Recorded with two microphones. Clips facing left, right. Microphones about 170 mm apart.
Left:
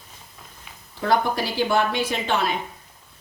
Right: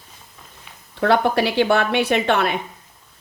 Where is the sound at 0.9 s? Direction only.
65° right (ahead or behind).